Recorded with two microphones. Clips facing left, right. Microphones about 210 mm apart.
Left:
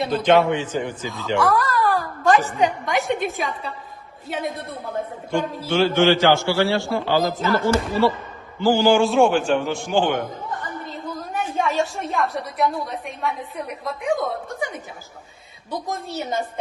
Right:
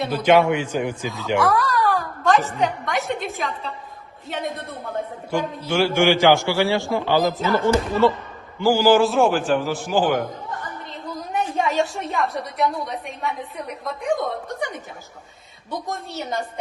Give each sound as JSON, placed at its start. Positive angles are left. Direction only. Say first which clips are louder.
{"t": 0.0, "sound": "a man's voice", "louder": "even", "side_deg": -10}
{"t": 1.4, "sound": "a woman's voice", "louder": "even", "side_deg": 0}
{"t": 5.7, "sound": "a man's voice", "louder": "left 1 dB", "side_deg": -10}